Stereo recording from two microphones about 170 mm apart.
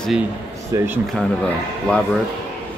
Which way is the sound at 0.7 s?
15° right (ahead or behind).